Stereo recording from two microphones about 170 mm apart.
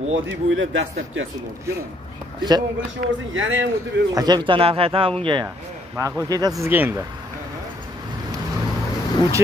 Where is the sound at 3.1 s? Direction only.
90° right.